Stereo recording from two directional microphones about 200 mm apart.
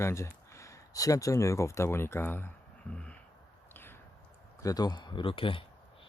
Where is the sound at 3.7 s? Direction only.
10° left (ahead or behind).